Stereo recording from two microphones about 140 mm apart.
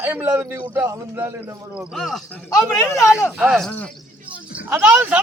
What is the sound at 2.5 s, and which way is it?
Speech, 25° left (ahead or behind).